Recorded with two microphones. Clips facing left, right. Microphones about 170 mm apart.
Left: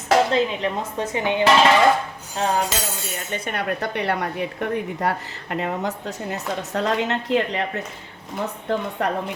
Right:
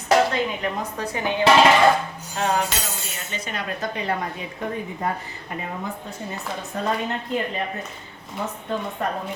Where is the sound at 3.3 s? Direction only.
60° left (ahead or behind); by 7.6 s 90° left.